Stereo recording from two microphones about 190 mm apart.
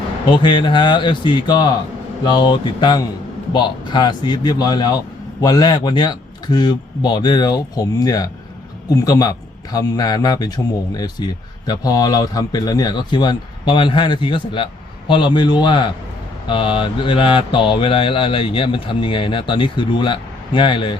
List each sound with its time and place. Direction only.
0.3 s speech: 25° left (ahead or behind)